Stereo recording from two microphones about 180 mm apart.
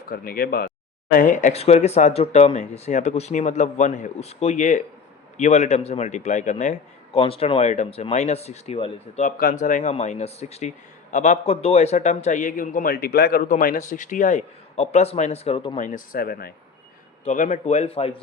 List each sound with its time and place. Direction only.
0.1 s speech: 55° left (ahead or behind)
1.1 s a man's voice: 45° left (ahead or behind); by 15.8 s 30° left (ahead or behind)
15.8 s speech: 50° left (ahead or behind)
17.2 s a man's voice: 40° left (ahead or behind)